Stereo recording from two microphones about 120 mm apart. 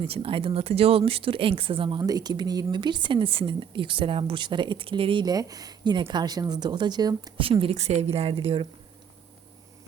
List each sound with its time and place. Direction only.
0.0 s speech: 50° right (ahead or behind)
5.2 s speech: 30° right (ahead or behind)
7.3 s speech: 45° right (ahead or behind)
7.8 s speech: 60° right (ahead or behind)